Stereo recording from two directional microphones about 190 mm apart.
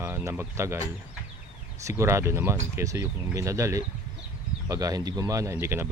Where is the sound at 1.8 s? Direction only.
15° right (ahead or behind).